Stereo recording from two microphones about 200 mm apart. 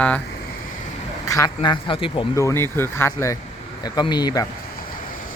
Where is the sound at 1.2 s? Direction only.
15° left (ahead or behind).